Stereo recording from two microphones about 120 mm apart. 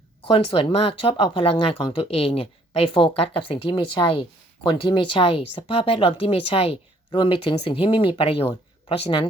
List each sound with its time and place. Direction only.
0.3 s speech: 50° left (ahead or behind)